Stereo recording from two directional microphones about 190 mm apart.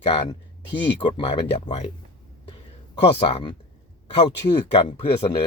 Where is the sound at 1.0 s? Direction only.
25° left (ahead or behind).